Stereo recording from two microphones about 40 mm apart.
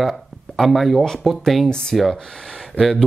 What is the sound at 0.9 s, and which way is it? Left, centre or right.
Speech, centre.